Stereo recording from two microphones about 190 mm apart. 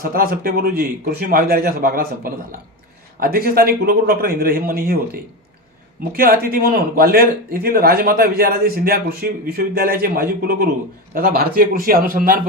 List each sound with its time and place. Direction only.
0.0 s a man's voice: 50° right (ahead or behind)